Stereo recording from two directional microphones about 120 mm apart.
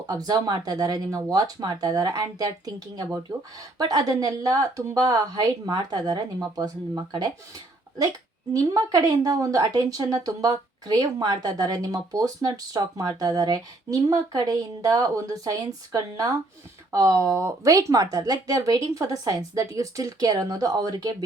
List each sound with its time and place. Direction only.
0.1 s a woman's voice: 35° right (ahead or behind)
8.5 s a woman's voice: 30° right (ahead or behind)